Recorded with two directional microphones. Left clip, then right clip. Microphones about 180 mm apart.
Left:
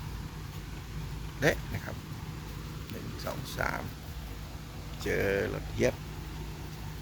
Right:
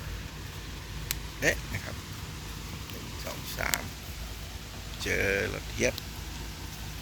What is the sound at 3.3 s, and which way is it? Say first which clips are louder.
Speech: left 2 dB; 20° left (ahead or behind).